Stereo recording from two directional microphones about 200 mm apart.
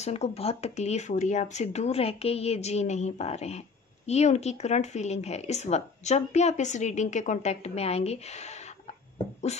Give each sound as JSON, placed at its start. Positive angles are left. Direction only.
{"t": 0.0, "sound": "speech", "side_deg": 30}